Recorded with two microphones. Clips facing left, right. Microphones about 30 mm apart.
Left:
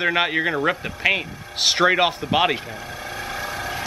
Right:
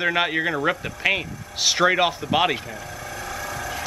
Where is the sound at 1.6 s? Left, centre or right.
Centre.